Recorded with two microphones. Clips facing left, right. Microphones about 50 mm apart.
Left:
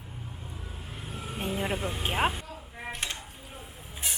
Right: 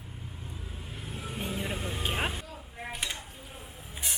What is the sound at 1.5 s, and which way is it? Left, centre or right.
Vehicle, left.